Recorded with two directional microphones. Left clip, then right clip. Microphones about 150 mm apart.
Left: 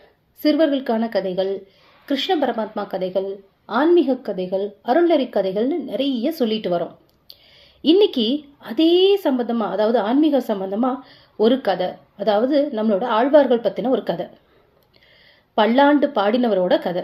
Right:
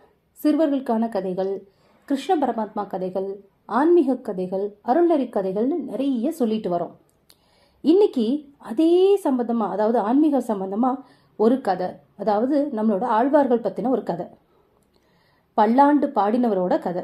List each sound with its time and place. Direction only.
0.4 s a woman's voice: 10° right (ahead or behind)
15.5 s a woman's voice: 5° right (ahead or behind)